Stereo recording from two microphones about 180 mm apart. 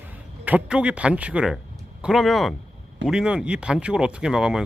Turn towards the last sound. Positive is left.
turn(degrees=-5)  # may be behind; listen again after turning